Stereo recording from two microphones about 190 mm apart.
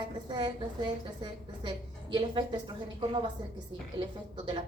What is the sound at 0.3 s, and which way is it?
A woman's voice, 25° right (ahead or behind).